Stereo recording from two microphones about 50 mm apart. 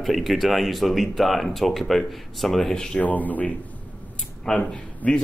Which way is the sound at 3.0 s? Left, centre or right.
Left.